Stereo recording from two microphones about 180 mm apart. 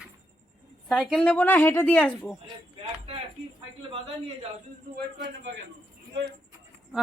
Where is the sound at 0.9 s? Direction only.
Centre (ahead or behind).